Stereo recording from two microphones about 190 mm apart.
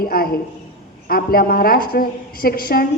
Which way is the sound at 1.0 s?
50° left (ahead or behind).